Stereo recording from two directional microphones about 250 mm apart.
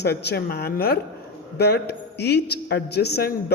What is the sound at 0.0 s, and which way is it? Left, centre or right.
A man's voice, left.